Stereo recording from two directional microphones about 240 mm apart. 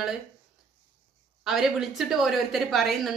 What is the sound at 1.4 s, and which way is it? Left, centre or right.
Speech, centre.